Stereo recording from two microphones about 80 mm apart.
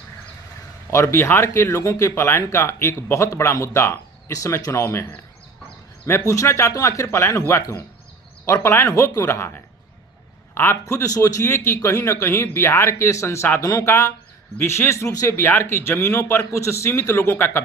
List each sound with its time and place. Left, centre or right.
0.9 s a man's voice: left
6.1 s a man's voice: left
10.5 s a man's voice: left